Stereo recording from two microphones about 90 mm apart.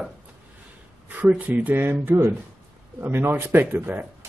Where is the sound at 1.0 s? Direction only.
20° right (ahead or behind).